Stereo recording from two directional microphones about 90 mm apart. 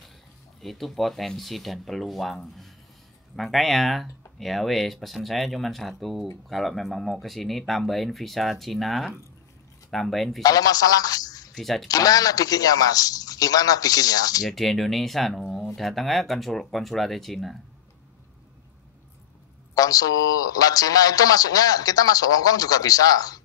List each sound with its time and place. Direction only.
0.6 s speech: centre (ahead or behind)
10.4 s a man's voice: 45° left (ahead or behind)
11.5 s speech: centre (ahead or behind)
11.9 s speech: 45° left (ahead or behind)
14.4 s speech: centre (ahead or behind)
19.7 s speech: 45° left (ahead or behind)